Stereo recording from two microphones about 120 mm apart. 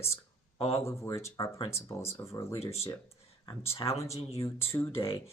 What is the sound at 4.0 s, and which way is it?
Speech, 25° left (ahead or behind).